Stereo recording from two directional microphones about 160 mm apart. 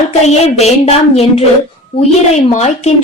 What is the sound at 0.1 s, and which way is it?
Speech, 40° left (ahead or behind).